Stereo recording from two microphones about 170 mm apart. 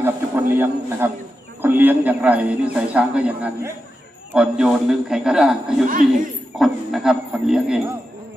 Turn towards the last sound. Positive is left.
turn(degrees=-5)  # may be behind; listen again after turning